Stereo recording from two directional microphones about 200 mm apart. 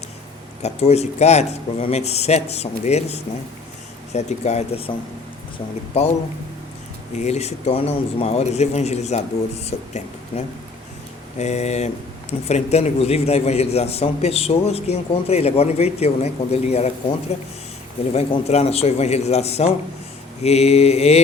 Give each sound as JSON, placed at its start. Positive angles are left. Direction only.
{"t": 0.6, "sound": "a man's voice", "side_deg": 30}
{"t": 7.2, "sound": "a man's voice", "side_deg": 35}